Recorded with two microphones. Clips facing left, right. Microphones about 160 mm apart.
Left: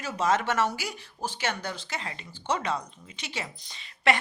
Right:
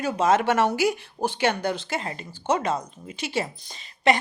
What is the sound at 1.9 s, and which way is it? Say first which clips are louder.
Speech: right 7 dB; 50° right (ahead or behind).